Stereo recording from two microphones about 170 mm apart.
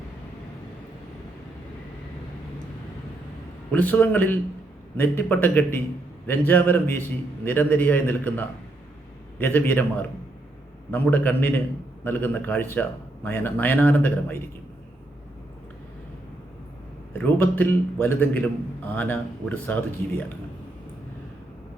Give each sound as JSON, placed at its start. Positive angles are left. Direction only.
{"t": 3.7, "sound": "a man's voice", "side_deg": 10}
{"t": 17.2, "sound": "a man's voice", "side_deg": 10}